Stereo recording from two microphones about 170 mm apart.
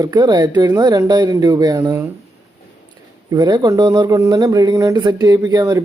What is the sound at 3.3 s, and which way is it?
Speech, 25° right (ahead or behind).